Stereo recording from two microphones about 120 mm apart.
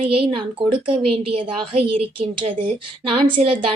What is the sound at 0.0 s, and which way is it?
A woman's voice, 50° right (ahead or behind).